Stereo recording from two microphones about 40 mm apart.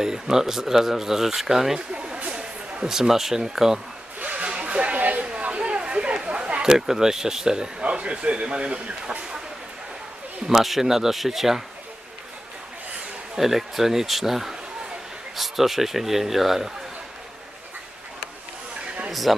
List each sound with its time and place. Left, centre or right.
0.0 s speech: centre
1.9 s a sound: right
2.9 s speech: centre
4.2 s a sound: right
4.9 s chatter: right
10.4 s speech: centre
13.3 s speech: centre
19.1 s speech: centre